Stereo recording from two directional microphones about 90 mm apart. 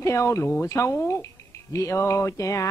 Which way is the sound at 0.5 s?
35° left (ahead or behind).